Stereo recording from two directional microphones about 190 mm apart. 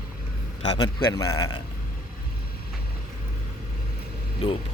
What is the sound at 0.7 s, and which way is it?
Speech, 20° left (ahead or behind).